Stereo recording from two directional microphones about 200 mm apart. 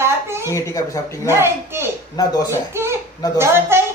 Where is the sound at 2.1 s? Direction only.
20° left (ahead or behind).